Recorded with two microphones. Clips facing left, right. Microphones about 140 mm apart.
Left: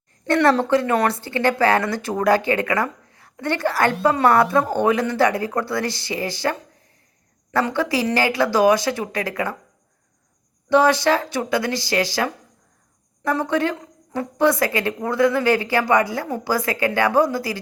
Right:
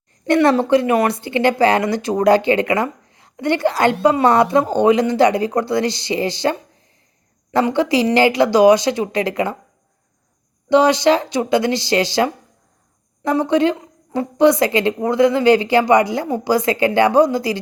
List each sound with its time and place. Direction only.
0.3 s speech: 15° right (ahead or behind)
10.7 s speech: 15° right (ahead or behind)